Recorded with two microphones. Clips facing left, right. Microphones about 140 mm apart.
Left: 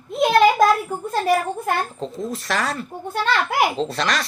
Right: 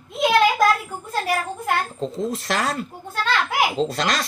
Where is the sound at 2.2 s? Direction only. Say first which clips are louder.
Even; 30° right (ahead or behind).